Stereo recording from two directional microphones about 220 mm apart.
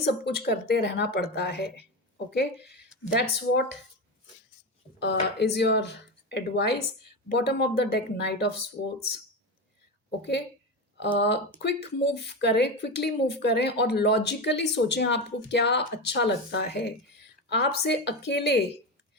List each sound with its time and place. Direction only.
0.3 s speech: 45° left (ahead or behind)
4.9 s speech: 50° left (ahead or behind)
10.1 s speech: 50° left (ahead or behind)